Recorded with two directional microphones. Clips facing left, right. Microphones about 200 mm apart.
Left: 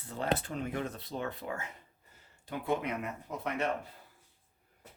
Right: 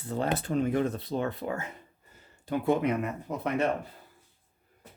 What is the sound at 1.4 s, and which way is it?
Speech, 55° right (ahead or behind).